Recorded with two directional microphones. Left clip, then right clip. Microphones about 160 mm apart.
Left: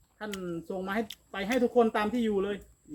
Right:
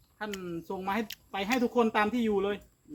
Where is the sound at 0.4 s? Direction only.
35° right (ahead or behind).